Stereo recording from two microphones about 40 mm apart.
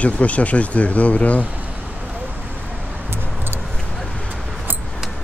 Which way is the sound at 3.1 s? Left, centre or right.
Right.